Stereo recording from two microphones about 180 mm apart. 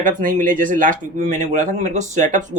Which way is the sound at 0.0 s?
45° right (ahead or behind).